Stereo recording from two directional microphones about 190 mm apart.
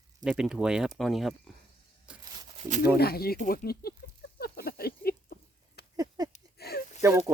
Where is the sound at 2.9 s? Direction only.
55° left (ahead or behind).